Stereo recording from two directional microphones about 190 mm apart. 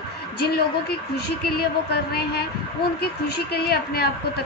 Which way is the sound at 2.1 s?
55° left (ahead or behind).